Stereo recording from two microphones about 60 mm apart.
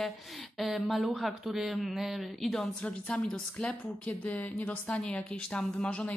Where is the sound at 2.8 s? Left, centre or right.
Centre.